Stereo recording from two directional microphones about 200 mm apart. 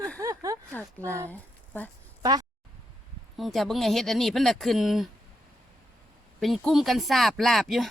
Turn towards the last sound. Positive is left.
turn(degrees=0)  # may be behind; listen again after turning